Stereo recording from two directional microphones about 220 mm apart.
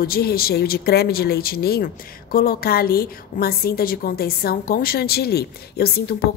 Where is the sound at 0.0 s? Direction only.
45° left (ahead or behind).